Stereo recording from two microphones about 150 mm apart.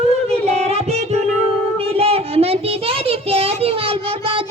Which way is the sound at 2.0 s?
40° right (ahead or behind).